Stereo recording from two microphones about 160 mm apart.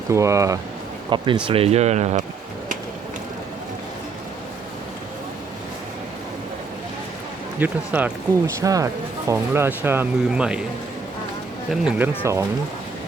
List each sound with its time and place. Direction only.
0.1 s speech: 20° right (ahead or behind)
1.1 s speech: 30° right (ahead or behind); by 2.2 s 45° right (ahead or behind)
7.6 s speech: 10° right (ahead or behind)
8.6 s speech: 20° right (ahead or behind)
11.7 s speech: 5° right (ahead or behind)
12.2 s speech: 20° right (ahead or behind)